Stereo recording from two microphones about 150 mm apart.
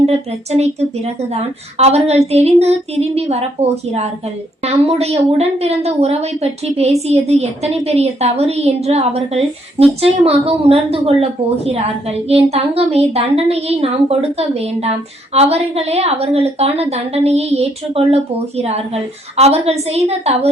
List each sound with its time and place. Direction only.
0.0 s a woman's voice: 45° right (ahead or behind)